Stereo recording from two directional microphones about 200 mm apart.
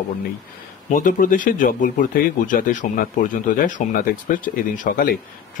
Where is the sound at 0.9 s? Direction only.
40° left (ahead or behind).